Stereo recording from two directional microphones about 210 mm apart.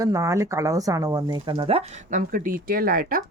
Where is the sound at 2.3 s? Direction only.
40° right (ahead or behind).